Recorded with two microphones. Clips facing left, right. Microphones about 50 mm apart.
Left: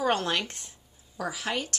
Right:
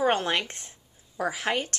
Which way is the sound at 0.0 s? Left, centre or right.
Right.